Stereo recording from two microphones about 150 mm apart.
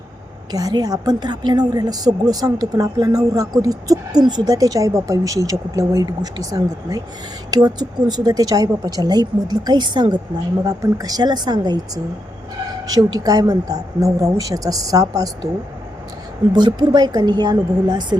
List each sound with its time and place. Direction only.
0.5 s a woman's voice: 25° right (ahead or behind)
12.9 s a woman's voice: 25° right (ahead or behind)
16.5 s a woman's voice: 30° right (ahead or behind)